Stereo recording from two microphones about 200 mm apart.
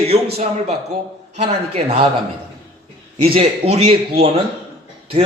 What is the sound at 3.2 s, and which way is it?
A man's voice, 30° right (ahead or behind).